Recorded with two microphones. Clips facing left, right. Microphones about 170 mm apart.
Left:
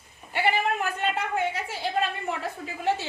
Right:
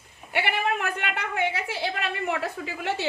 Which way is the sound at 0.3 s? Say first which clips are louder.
Left 1 dB; 65° right (ahead or behind).